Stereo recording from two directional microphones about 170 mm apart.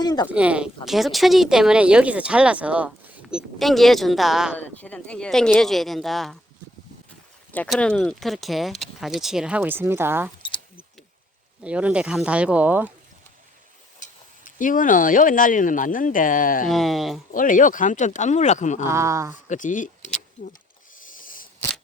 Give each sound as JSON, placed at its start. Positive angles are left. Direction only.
{"t": 0.0, "sound": "speech", "side_deg": 25}
{"t": 0.3, "sound": "speech", "side_deg": -5}
{"t": 4.5, "sound": "speech", "side_deg": 10}
{"t": 7.7, "sound": "speech", "side_deg": 5}
{"t": 11.6, "sound": "speech", "side_deg": -5}
{"t": 14.4, "sound": "speech", "side_deg": 50}
{"t": 16.6, "sound": "speech", "side_deg": 0}
{"t": 17.3, "sound": "speech", "side_deg": 50}
{"t": 18.9, "sound": "speech", "side_deg": -15}
{"t": 19.5, "sound": "speech", "side_deg": 50}
{"t": 21.1, "sound": "a sound", "side_deg": 55}